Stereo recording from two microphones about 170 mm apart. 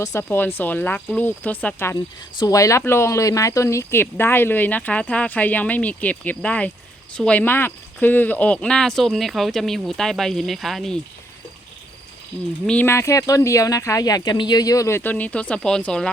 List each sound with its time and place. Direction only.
0.0 s speech: 15° left (ahead or behind)
12.6 s speech: 10° left (ahead or behind)